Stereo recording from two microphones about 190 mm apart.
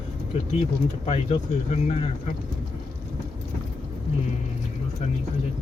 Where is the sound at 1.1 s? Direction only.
35° left (ahead or behind).